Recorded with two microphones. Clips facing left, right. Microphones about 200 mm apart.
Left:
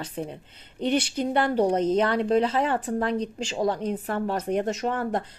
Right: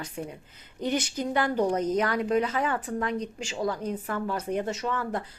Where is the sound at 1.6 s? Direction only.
30° left (ahead or behind).